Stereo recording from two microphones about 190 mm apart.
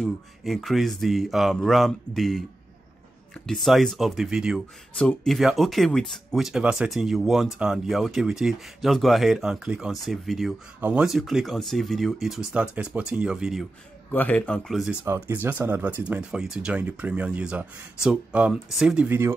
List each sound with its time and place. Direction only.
0.0 s speech: centre (ahead or behind)
3.6 s speech: centre (ahead or behind)
15.0 s speech: 10° right (ahead or behind)